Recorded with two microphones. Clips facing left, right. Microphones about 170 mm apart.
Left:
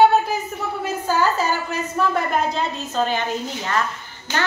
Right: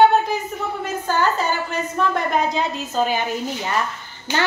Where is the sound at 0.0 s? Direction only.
5° left (ahead or behind).